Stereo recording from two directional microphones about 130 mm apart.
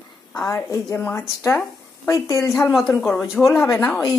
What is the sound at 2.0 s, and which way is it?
Speech, 25° left (ahead or behind).